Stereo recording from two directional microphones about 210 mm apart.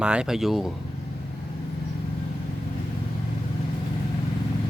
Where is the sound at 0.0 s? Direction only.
5° right (ahead or behind).